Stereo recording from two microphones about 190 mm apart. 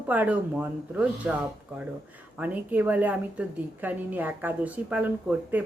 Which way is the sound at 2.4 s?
10° right (ahead or behind).